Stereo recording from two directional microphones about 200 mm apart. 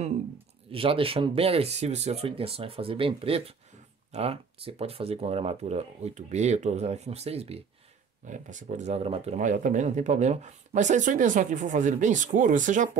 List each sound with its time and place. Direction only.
0.7 s speech: 25° right (ahead or behind)